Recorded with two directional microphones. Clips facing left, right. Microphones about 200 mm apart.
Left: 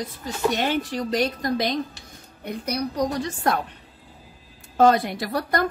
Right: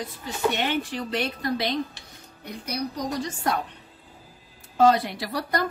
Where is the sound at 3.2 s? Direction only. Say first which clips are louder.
Left 3 dB; 55° left (ahead or behind).